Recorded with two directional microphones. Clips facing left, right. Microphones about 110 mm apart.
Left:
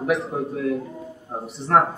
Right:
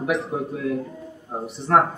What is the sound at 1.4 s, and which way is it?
Speech, centre (ahead or behind).